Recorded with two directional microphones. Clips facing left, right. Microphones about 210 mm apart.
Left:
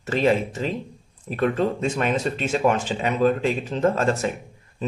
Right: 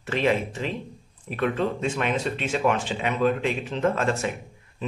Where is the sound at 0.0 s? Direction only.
40° left (ahead or behind).